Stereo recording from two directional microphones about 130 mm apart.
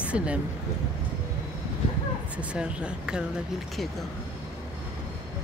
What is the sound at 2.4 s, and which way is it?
Speech, 10° right (ahead or behind).